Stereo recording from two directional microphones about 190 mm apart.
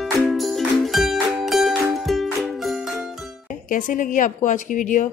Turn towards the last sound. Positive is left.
turn(degrees=45)  # may be behind; listen again after turning